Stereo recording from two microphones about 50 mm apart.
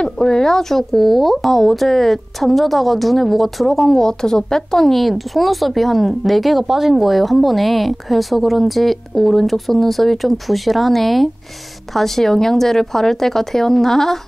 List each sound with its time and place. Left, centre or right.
0.0 s speech: centre